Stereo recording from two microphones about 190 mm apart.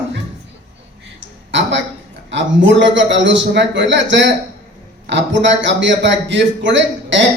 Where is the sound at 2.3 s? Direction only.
70° right (ahead or behind).